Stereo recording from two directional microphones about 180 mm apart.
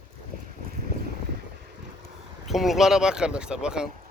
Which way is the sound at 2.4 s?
Centre (ahead or behind).